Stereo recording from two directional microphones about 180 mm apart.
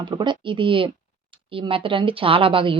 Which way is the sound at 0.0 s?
25° right (ahead or behind).